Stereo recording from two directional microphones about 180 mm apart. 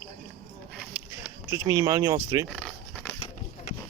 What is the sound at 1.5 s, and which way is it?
Speech, 15° right (ahead or behind).